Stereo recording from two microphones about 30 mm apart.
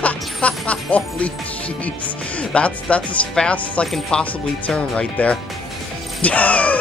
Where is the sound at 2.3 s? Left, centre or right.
Left.